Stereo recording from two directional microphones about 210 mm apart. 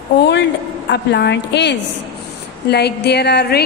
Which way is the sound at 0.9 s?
55° left (ahead or behind).